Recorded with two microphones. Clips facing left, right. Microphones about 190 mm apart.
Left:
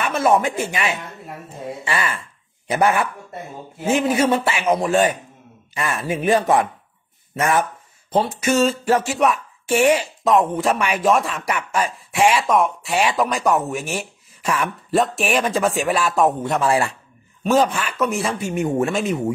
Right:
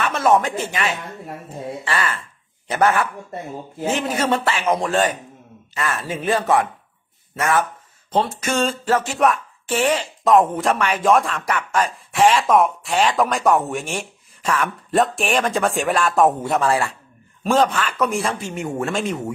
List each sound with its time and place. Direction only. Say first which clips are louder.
0.0 s a man's voice: even; 10° left (ahead or behind)
10.2 s speech: right 2 dB; centre (ahead or behind)
12.9 s a man's voice: right 1 dB; 10° left (ahead or behind)
16.6 s speech: left 1 dB; 20° left (ahead or behind); by 18.5 s centre (ahead or behind)
18.5 s a man's voice: left 5 dB; 15° left (ahead or behind)